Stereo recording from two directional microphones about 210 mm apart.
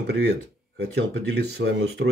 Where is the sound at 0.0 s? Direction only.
55° right (ahead or behind).